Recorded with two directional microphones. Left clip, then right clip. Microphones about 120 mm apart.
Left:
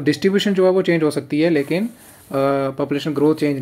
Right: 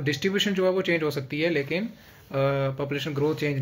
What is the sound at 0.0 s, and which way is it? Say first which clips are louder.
Speech: left 8 dB; 40° left (ahead or behind).